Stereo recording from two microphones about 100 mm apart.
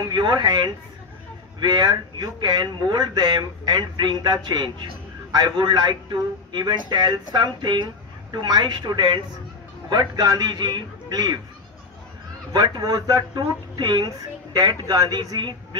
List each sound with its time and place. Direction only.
0.0 s speech: 50° right (ahead or behind)
12.6 s a man's voice: 45° right (ahead or behind)